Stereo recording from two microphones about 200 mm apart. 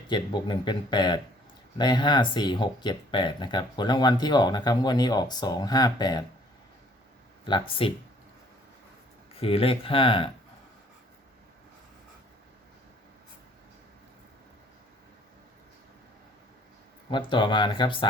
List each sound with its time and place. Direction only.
0.1 s speech: 25° left (ahead or behind)
7.8 s speech: 25° left (ahead or behind)
9.3 s speech: 30° left (ahead or behind)
17.1 s speech: 25° left (ahead or behind)